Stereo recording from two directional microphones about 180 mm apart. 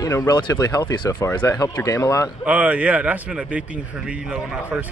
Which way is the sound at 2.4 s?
10° right (ahead or behind).